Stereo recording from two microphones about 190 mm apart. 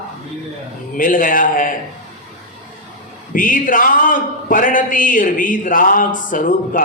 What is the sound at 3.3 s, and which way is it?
A man's voice, 45° left (ahead or behind).